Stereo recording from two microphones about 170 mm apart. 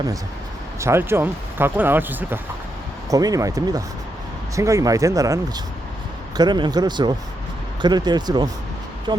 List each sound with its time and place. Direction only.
0.8 s speech: 15° right (ahead or behind)